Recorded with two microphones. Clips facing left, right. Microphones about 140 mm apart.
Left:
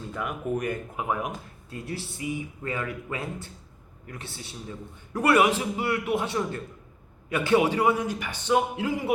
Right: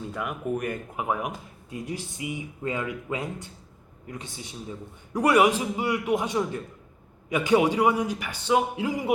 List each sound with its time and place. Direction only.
0.1 s a man's voice: 5° right (ahead or behind)